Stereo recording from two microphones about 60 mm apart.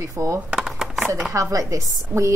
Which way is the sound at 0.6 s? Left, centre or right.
Centre.